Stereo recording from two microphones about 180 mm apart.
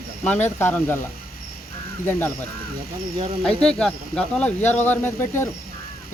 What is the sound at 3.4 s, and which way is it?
Speech, 5° left (ahead or behind).